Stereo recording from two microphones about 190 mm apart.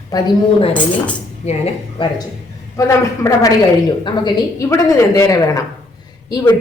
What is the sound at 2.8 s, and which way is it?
A woman's voice, 15° left (ahead or behind).